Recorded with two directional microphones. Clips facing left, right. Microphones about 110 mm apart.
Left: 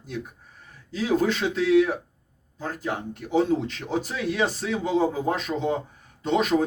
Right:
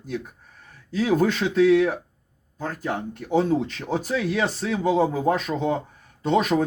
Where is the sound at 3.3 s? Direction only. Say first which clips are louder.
Right 1 dB; 45° right (ahead or behind).